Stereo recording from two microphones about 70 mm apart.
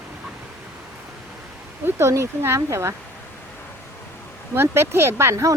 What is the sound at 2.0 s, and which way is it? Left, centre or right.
Speech, right.